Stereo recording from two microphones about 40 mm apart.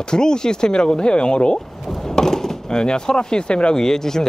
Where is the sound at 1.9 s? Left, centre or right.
Centre.